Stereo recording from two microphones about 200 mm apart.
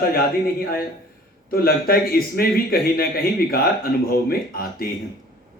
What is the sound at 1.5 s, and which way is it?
A man's voice, 50° left (ahead or behind).